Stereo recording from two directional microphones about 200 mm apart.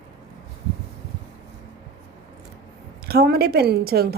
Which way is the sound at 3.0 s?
50° right (ahead or behind).